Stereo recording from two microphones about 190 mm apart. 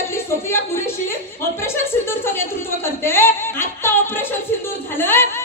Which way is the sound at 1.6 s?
15° left (ahead or behind).